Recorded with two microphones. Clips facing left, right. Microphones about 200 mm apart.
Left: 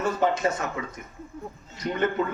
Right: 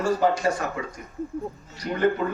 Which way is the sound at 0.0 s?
20° left (ahead or behind).